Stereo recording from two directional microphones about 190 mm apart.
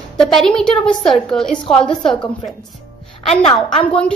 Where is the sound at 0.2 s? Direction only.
Centre (ahead or behind).